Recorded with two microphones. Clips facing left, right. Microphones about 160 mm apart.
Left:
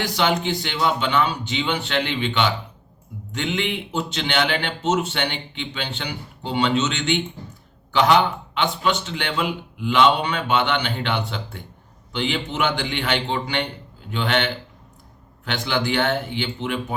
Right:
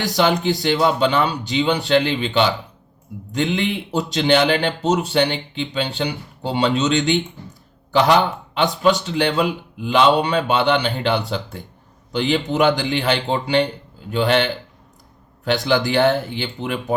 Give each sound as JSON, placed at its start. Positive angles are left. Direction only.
{"t": 0.0, "sound": "speech", "side_deg": -40}